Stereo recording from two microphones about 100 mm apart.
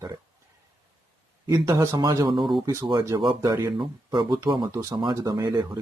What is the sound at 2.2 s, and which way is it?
Speech, 55° right (ahead or behind).